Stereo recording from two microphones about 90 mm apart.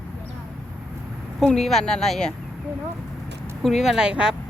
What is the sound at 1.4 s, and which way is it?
Speech, 5° left (ahead or behind).